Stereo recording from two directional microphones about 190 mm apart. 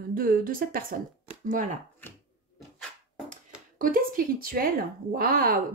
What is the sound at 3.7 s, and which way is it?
Speech, 45° right (ahead or behind).